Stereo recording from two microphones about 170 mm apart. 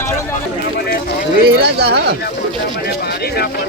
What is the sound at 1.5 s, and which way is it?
Speech, 70° right (ahead or behind).